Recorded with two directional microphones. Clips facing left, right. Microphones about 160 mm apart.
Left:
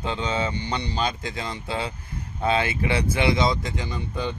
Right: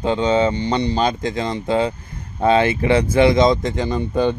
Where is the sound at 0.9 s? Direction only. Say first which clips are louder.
Right 8 dB; 45° right (ahead or behind).